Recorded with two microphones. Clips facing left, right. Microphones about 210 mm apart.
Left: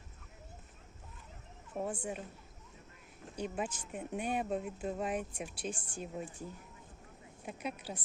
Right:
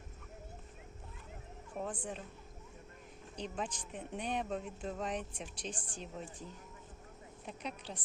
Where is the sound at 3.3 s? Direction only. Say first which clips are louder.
Left 3 dB; 10° left (ahead or behind).